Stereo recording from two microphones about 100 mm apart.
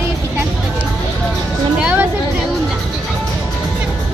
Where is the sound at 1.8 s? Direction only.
10° right (ahead or behind).